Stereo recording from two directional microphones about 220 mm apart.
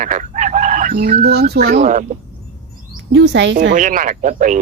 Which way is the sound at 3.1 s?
55° right (ahead or behind).